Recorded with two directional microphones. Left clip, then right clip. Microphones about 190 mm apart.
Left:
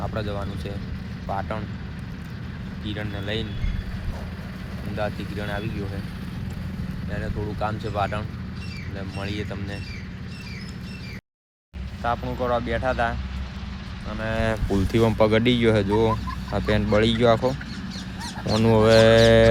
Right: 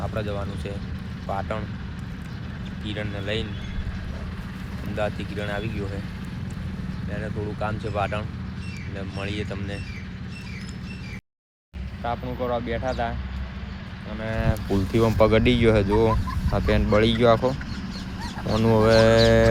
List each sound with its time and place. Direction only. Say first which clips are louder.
0.0 s speech: even; 5° left (ahead or behind)
2.8 s speech: right 1 dB; centre (ahead or behind)
4.9 s speech: right 1 dB; centre (ahead or behind)
7.1 s speech: even; 5° left (ahead or behind)
12.0 s speech: left 3 dB; 10° left (ahead or behind)
18.5 s speech: left 2 dB; 20° left (ahead or behind)